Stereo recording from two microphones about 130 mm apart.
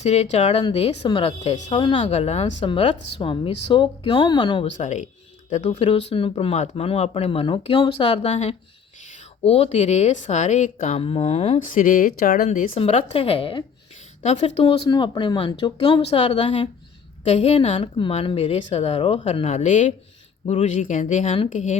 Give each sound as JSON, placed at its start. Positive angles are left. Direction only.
{"t": 0.0, "sound": "speech", "side_deg": 55}
{"t": 2.6, "sound": "speech", "side_deg": 45}
{"t": 4.6, "sound": "speech", "side_deg": 60}
{"t": 11.0, "sound": "speech", "side_deg": 50}
{"t": 11.6, "sound": "speech", "side_deg": 85}
{"t": 12.7, "sound": "speech", "side_deg": 50}
{"t": 14.2, "sound": "speech", "side_deg": 60}
{"t": 14.7, "sound": "speech", "side_deg": 35}
{"t": 20.4, "sound": "speech", "side_deg": 55}